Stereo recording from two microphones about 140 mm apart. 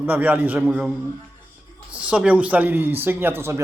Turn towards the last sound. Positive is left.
turn(degrees=-15)  # may be behind; listen again after turning